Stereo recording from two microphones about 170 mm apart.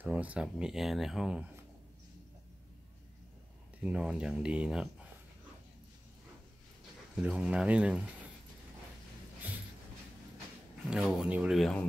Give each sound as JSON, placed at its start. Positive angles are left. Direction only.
{"t": 0.0, "sound": "speech", "side_deg": -10}
{"t": 3.8, "sound": "speech", "side_deg": -5}
{"t": 7.2, "sound": "speech", "side_deg": -5}
{"t": 10.9, "sound": "speech", "side_deg": -5}